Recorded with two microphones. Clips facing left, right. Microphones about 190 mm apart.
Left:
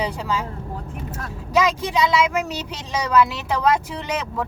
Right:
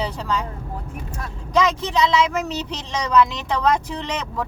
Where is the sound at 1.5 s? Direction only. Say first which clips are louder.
Even; 10° left (ahead or behind).